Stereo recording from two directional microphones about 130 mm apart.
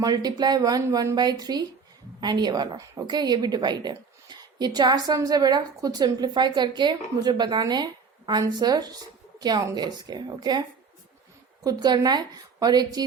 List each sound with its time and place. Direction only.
0.0 s a woman's voice: 30° right (ahead or behind)